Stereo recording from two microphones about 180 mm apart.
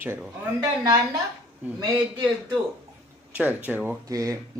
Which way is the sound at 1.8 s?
20° right (ahead or behind).